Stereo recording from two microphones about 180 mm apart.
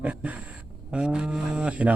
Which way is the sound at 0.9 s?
5° right (ahead or behind).